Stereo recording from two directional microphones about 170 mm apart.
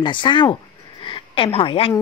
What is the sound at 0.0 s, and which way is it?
A woman's voice, 30° left (ahead or behind).